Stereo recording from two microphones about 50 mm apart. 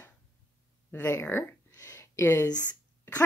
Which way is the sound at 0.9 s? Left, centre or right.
Left.